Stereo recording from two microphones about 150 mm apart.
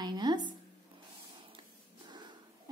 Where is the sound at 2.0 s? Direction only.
30° right (ahead or behind).